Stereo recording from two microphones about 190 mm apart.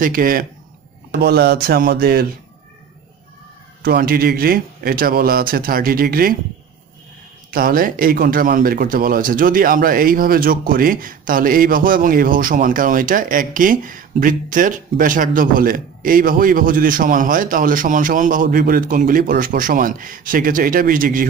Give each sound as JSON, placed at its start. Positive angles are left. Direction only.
{"t": 0.0, "sound": "speech", "side_deg": -50}
{"t": 3.8, "sound": "speech", "side_deg": -50}
{"t": 7.5, "sound": "speech", "side_deg": -50}